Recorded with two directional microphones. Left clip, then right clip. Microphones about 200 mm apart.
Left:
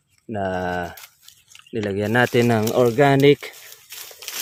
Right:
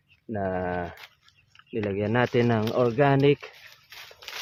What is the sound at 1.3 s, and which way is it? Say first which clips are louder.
Speech: left 5 dB; 40° left (ahead or behind).